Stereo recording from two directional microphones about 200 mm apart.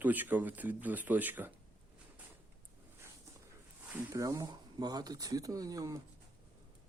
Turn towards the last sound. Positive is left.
turn(degrees=-15)  # may be behind; listen again after turning